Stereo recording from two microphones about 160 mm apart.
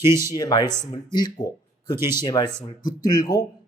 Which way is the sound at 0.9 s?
25° left (ahead or behind).